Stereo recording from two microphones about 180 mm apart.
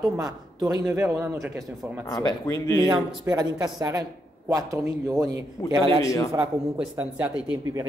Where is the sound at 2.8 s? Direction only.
25° right (ahead or behind).